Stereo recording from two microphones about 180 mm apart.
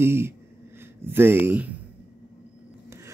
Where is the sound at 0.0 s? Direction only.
15° right (ahead or behind).